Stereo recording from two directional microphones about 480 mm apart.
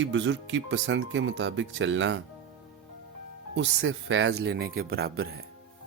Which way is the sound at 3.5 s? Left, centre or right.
Right.